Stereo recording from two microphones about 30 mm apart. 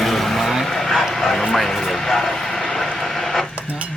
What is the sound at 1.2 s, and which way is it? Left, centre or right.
Speech, centre.